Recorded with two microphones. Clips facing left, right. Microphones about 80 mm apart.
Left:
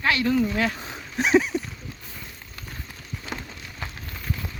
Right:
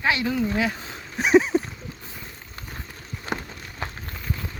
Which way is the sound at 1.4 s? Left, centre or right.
Right.